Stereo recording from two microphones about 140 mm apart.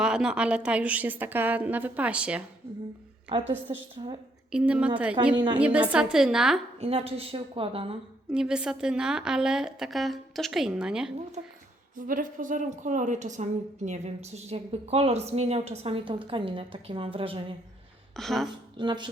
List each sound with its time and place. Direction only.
0.0 s a woman's voice: 5° right (ahead or behind)
3.3 s speech: 40° right (ahead or behind)
4.5 s a woman's voice: 10° right (ahead or behind)
5.3 s speech: 35° right (ahead or behind)
5.5 s a woman's voice: 10° right (ahead or behind)
6.7 s a woman's voice: 45° right (ahead or behind)
8.3 s a woman's voice: 5° right (ahead or behind)
11.9 s a woman's voice: 75° right (ahead or behind); by 17.4 s 40° right (ahead or behind)
18.2 s a woman's voice: centre (ahead or behind)
18.8 s speech: 35° right (ahead or behind)